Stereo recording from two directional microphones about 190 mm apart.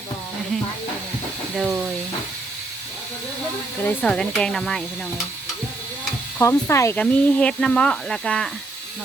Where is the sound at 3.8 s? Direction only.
10° left (ahead or behind).